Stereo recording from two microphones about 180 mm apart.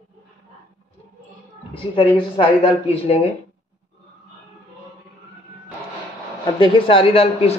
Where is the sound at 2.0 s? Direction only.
30° left (ahead or behind).